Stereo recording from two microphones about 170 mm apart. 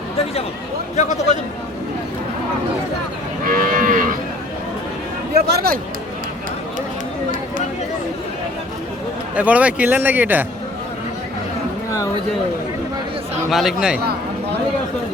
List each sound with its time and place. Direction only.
0.9 s a man's voice: 45° left (ahead or behind)
3.4 s moo: 55° right (ahead or behind)
5.3 s speech: 70° right (ahead or behind)
9.3 s a man's voice: 10° right (ahead or behind)
13.5 s speech: centre (ahead or behind)
14.0 s a sound: 70° right (ahead or behind)